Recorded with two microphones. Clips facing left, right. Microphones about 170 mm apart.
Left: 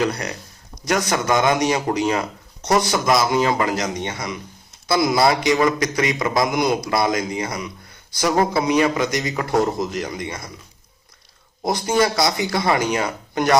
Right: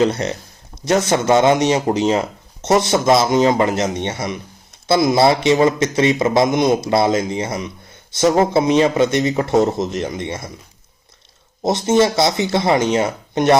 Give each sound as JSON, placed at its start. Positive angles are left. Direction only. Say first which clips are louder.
{"t": 0.0, "sound": "a man's voice", "louder": "right 5 dB", "side_deg": -25}
{"t": 11.6, "sound": "a man's voice", "louder": "right 4 dB", "side_deg": -25}